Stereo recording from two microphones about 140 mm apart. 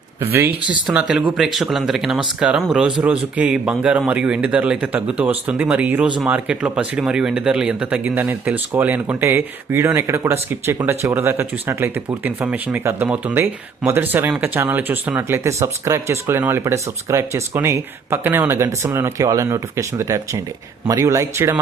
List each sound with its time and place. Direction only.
0.3 s speech: 15° right (ahead or behind)